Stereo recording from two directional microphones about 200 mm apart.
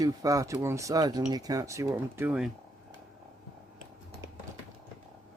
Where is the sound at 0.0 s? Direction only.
15° right (ahead or behind).